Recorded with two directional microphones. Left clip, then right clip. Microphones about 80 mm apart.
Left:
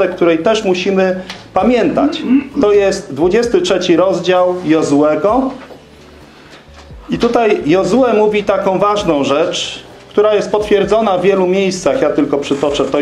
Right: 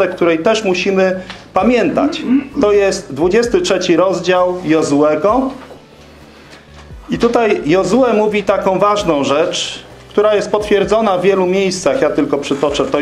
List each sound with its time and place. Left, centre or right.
0.0 s speech: right
7.1 s speech: right